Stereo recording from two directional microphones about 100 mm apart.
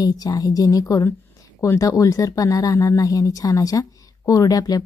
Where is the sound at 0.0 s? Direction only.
40° left (ahead or behind).